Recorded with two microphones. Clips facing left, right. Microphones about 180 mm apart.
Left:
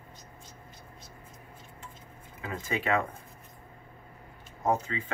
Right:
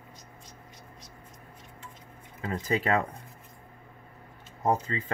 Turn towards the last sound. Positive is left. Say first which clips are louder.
# right 1 dB
turn(degrees=-35)  # may be behind; listen again after turning